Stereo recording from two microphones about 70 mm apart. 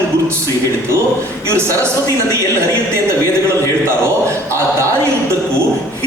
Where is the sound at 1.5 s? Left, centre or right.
Right.